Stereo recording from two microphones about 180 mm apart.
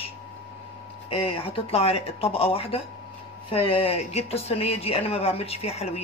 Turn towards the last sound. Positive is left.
turn(degrees=35)  # may be behind; listen again after turning